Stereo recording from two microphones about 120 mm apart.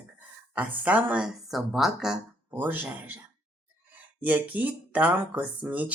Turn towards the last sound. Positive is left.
turn(degrees=-15)  # may be behind; listen again after turning